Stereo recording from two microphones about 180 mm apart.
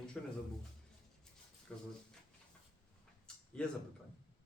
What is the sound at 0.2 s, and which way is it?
Speech, 5° left (ahead or behind).